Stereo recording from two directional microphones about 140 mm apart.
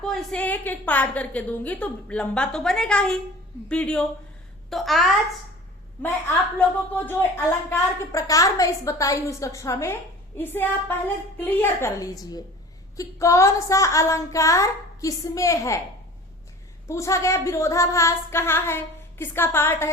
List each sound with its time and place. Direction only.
0.0 s a woman's voice: centre (ahead or behind)
6.6 s a woman's voice: 10° left (ahead or behind)
16.8 s a woman's voice: 20° left (ahead or behind)